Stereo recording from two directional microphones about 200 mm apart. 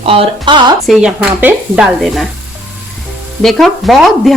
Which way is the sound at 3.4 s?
Centre (ahead or behind).